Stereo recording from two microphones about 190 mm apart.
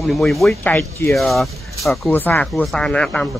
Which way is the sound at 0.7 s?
15° left (ahead or behind).